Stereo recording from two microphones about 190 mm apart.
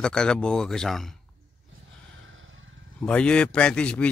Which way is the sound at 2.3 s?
90° right.